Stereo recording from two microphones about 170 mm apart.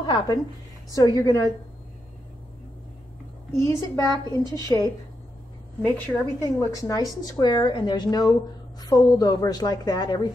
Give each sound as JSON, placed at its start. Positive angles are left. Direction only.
{"t": 0.0, "sound": "a woman's voice", "side_deg": 25}
{"t": 3.5, "sound": "a woman's voice", "side_deg": 15}